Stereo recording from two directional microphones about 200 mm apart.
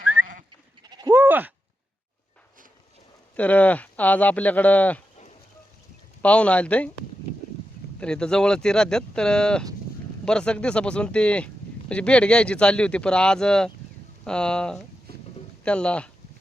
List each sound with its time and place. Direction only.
0.9 s bleat: 20° right (ahead or behind)
1.1 s sheep: 10° right (ahead or behind)
3.3 s speech: 5° left (ahead or behind)
6.2 s speech: 5° left (ahead or behind)
7.9 s speech: 5° left (ahead or behind)